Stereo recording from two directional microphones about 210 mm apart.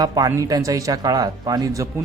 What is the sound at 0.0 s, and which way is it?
Speech, 20° right (ahead or behind).